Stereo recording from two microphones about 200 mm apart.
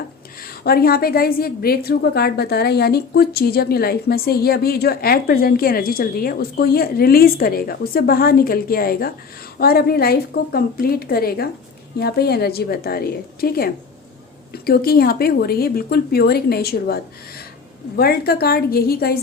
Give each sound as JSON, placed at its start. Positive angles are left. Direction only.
{"t": 0.4, "sound": "a woman's voice", "side_deg": 50}